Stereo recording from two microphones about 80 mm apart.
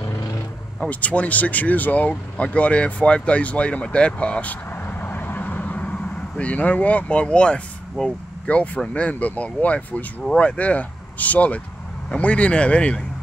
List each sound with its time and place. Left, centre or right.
0.7 s speech: centre